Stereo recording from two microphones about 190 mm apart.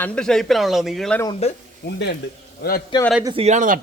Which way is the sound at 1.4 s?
35° left (ahead or behind).